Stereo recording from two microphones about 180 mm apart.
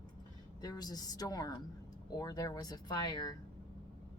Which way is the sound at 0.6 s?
20° left (ahead or behind).